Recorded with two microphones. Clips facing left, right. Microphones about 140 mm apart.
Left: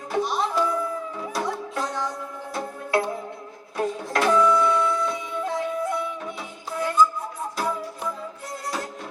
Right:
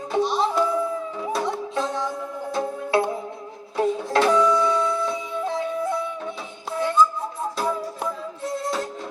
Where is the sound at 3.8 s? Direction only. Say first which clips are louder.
Right 4 dB; 25° right (ahead or behind).